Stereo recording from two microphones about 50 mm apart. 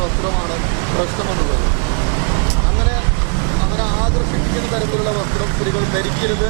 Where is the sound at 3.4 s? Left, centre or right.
Right.